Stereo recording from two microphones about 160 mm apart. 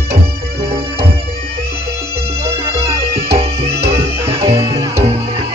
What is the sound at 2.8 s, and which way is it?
Music, 40° right (ahead or behind).